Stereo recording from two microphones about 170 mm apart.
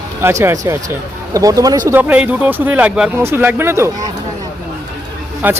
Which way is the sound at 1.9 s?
10° right (ahead or behind).